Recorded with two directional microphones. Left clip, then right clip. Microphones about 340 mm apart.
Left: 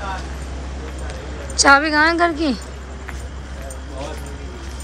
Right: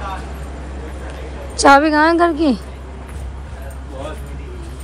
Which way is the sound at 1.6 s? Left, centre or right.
Centre.